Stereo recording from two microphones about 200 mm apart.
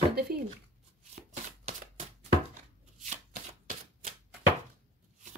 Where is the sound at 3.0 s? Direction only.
40° right (ahead or behind).